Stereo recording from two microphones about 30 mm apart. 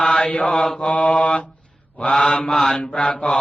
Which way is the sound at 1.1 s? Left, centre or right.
Left.